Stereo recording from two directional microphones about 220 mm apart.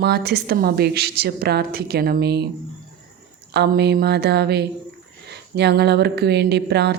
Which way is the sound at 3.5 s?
45° right (ahead or behind).